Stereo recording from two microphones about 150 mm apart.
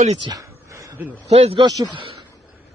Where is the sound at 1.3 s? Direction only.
40° right (ahead or behind).